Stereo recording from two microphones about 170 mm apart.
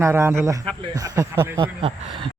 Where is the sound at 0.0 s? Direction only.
15° right (ahead or behind).